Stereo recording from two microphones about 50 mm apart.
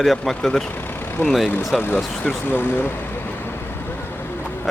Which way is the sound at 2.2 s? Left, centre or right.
Left.